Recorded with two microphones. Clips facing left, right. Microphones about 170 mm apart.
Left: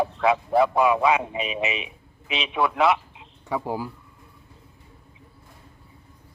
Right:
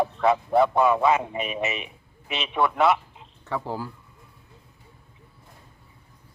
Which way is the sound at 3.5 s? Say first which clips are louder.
Left 2 dB; 15° left (ahead or behind).